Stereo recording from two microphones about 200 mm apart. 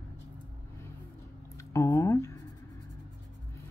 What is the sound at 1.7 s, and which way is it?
Speech, 15° left (ahead or behind).